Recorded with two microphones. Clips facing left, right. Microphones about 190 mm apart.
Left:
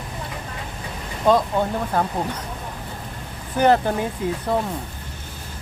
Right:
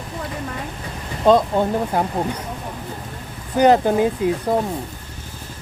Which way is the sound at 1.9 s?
20° right (ahead or behind).